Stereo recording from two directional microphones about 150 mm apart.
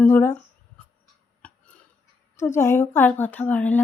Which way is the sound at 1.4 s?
5° left (ahead or behind).